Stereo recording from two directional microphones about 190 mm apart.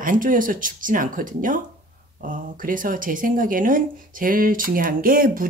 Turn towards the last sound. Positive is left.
turn(degrees=-45)  # may be behind; listen again after turning